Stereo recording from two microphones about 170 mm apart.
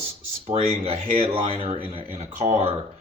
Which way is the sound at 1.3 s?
30° right (ahead or behind).